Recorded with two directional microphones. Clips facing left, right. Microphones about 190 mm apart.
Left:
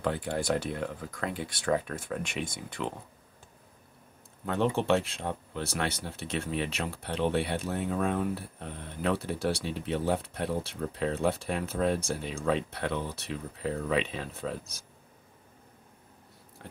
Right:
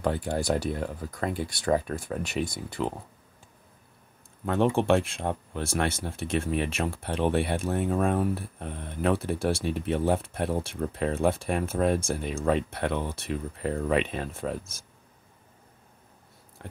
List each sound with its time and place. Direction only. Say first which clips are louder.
0.0 s speech: right 3 dB; 40° right (ahead or behind)
4.5 s speech: right 4 dB; 50° right (ahead or behind)